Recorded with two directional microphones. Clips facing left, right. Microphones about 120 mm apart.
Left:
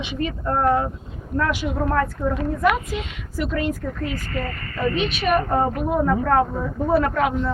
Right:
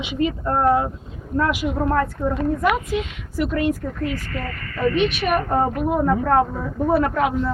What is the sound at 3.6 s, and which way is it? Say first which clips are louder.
Speech: right 3 dB; 40° right (ahead or behind).